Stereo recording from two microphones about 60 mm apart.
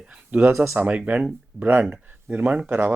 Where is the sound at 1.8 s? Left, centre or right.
Right.